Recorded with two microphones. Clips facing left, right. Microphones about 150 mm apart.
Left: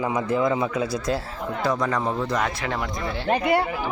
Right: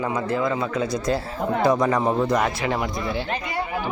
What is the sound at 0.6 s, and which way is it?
Speech, 5° left (ahead or behind).